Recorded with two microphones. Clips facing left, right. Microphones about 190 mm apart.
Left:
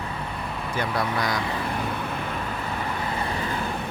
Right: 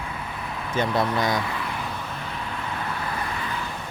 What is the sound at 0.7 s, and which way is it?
Speech, 20° right (ahead or behind).